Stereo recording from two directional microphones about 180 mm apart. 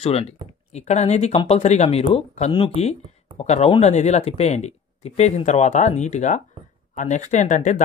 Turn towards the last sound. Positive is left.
turn(degrees=40)  # may be behind; listen again after turning